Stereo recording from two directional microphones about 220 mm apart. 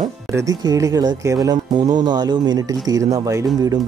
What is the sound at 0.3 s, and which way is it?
Speech, 15° right (ahead or behind).